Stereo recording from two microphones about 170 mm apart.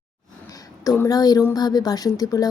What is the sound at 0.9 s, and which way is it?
A woman's voice, 20° left (ahead or behind).